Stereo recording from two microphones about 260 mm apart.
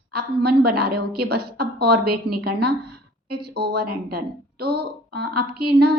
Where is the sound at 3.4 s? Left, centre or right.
Right.